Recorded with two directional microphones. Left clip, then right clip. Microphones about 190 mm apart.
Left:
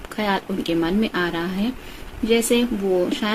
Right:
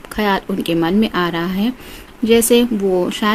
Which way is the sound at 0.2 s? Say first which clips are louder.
Right 5 dB; 55° right (ahead or behind).